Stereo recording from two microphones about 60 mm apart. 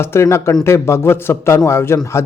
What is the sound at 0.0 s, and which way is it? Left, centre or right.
Speech, left.